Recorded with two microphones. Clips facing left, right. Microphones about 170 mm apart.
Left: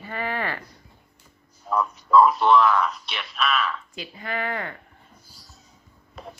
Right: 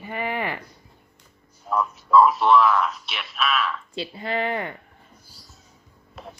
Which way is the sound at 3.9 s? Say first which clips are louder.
Right 4 dB; 30° right (ahead or behind).